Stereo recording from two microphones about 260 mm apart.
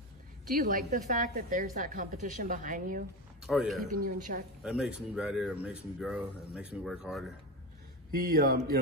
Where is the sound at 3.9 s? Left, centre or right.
Right.